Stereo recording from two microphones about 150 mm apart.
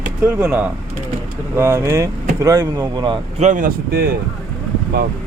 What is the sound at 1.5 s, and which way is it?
Speech, 15° right (ahead or behind).